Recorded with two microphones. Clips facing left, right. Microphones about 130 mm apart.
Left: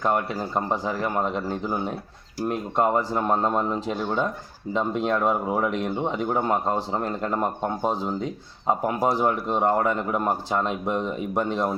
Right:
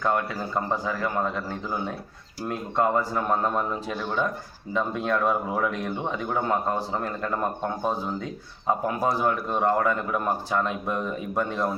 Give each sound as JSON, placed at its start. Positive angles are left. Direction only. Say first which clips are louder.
{"t": 0.0, "sound": "speech", "louder": "left 1 dB", "side_deg": 20}